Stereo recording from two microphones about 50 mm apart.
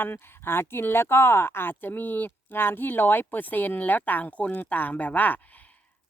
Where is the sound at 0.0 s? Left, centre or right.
Left.